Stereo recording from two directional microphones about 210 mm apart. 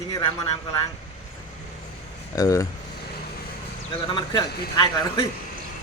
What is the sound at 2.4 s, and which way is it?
Speech, 15° left (ahead or behind).